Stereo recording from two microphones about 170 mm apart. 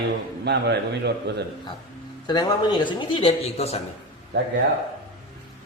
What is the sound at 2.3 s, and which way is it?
A man's voice, 25° left (ahead or behind).